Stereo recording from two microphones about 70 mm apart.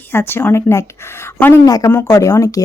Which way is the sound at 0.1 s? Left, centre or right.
Left.